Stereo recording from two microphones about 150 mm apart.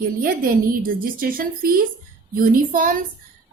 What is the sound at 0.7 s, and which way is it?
A woman's voice, 70° right (ahead or behind).